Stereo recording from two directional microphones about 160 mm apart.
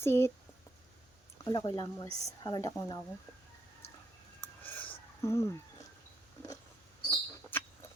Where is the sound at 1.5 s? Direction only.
30° left (ahead or behind).